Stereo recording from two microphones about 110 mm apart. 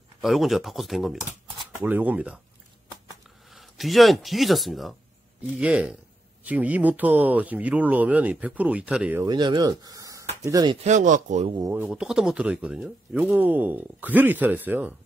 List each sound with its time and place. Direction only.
0.2 s speech: centre (ahead or behind)
1.8 s speech: 15° right (ahead or behind)
3.4 s speech: centre (ahead or behind)
5.6 s speech: 10° right (ahead or behind)
9.2 s speech: 40° right (ahead or behind)
10.8 s speech: 85° right
11.9 s speech: 5° right (ahead or behind)